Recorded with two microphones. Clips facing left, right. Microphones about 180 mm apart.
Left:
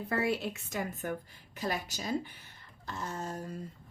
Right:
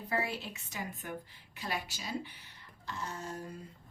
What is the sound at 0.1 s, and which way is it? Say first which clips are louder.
A woman's voice: left 4 dB; 55° left (ahead or behind).